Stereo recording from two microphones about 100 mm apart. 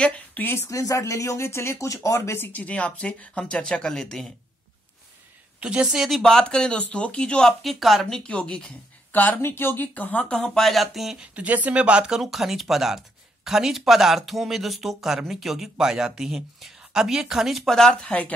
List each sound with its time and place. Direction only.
0.0 s speech: 15° left (ahead or behind)
0.7 s speech: 35° left (ahead or behind); by 4.3 s 5° left (ahead or behind)
5.6 s speech: 10° right (ahead or behind); by 18.3 s 10° left (ahead or behind)